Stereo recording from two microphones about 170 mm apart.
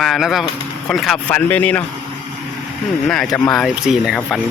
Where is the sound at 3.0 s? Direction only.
5° left (ahead or behind).